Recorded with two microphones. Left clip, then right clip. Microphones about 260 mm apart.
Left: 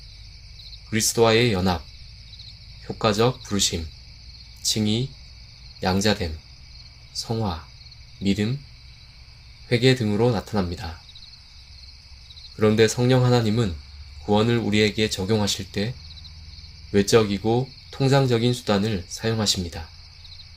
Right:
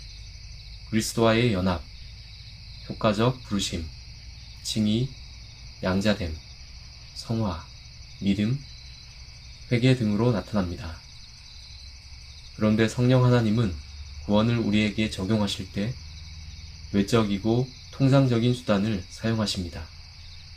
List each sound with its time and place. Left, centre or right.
0.9 s speech: left
3.0 s speech: left
8.2 s speech: left
9.6 s speech: left
12.5 s speech: left
16.9 s speech: left